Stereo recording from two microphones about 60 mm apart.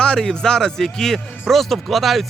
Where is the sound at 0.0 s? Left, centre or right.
Centre.